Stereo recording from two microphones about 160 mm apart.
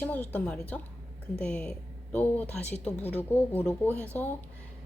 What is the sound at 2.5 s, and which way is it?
Speech, 45° left (ahead or behind).